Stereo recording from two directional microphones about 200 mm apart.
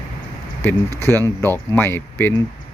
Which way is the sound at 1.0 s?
10° left (ahead or behind).